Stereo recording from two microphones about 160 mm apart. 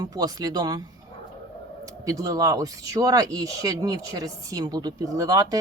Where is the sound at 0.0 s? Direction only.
25° right (ahead or behind).